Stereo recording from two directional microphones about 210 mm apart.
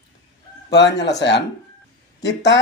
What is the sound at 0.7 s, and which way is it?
Speech, 55° left (ahead or behind).